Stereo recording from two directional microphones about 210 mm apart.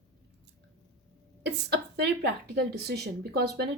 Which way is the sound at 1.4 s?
50° right (ahead or behind).